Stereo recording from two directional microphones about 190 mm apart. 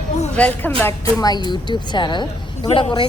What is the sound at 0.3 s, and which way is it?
Speech, 5° left (ahead or behind).